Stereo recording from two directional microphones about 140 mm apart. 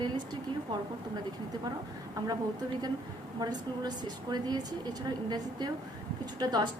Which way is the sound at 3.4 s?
30° right (ahead or behind).